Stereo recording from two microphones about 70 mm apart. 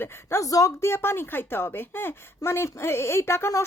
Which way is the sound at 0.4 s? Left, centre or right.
Left.